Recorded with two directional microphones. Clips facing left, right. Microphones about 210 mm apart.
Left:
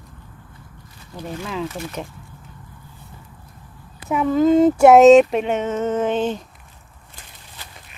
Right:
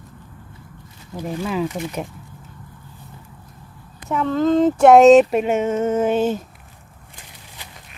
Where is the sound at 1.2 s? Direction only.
10° right (ahead or behind).